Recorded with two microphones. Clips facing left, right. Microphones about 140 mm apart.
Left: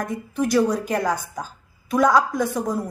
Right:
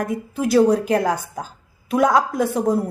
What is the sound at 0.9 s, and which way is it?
Speech, 55° right (ahead or behind).